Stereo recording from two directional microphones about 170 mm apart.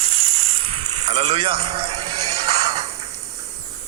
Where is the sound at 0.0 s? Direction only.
35° right (ahead or behind).